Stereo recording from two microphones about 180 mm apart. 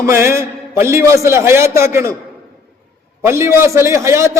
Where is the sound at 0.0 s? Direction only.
15° right (ahead or behind).